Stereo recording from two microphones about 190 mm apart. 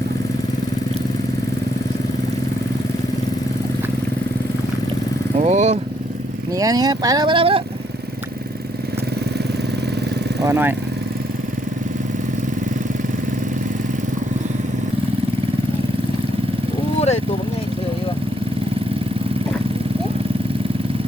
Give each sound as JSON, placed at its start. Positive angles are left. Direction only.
{"t": 5.4, "sound": "speech", "side_deg": -35}
{"t": 6.6, "sound": "speech", "side_deg": -20}
{"t": 10.4, "sound": "speech", "side_deg": -15}